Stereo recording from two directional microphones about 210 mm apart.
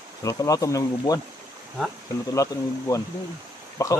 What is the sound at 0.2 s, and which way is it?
Speech, 15° left (ahead or behind).